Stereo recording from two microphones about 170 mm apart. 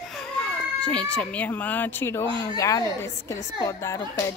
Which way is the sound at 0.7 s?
5° left (ahead or behind).